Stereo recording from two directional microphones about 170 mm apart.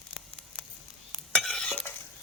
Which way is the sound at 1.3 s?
5° left (ahead or behind).